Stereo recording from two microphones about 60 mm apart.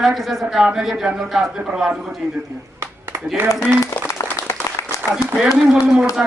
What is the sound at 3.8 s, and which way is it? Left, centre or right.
Applause, left.